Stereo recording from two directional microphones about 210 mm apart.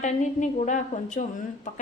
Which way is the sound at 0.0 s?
35° left (ahead or behind).